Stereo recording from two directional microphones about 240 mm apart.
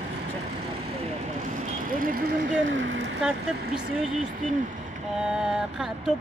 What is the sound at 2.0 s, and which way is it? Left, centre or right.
Vehicle, right.